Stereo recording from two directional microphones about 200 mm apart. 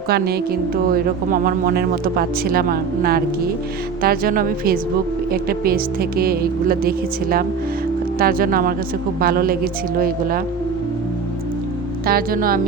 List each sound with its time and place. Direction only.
0.1 s speech: 50° right (ahead or behind)
12.0 s speech: 45° right (ahead or behind)